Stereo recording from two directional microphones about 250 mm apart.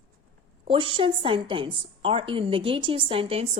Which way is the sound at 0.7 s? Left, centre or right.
Right.